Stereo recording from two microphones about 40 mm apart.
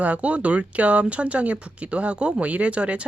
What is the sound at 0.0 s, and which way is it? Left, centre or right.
Speech, right.